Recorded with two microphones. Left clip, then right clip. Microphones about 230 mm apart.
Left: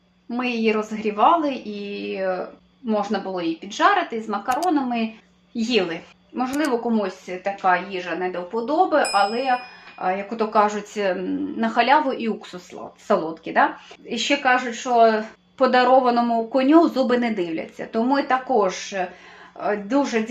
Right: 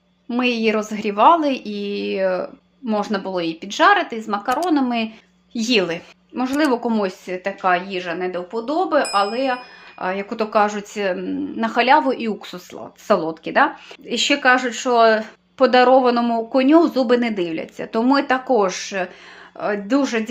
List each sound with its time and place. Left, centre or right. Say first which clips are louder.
0.3 s a woman's voice: right 3 dB; right
15.5 s speech: right 3 dB; right